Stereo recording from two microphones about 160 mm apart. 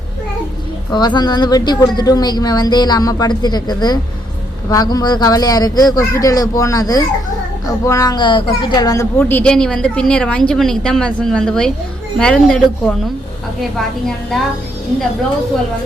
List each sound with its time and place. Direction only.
0.9 s a woman's voice: 25° left (ahead or behind)
9.1 s a woman's voice: 5° left (ahead or behind)